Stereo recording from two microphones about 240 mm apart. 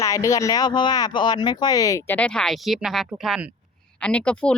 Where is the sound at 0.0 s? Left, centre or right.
Centre.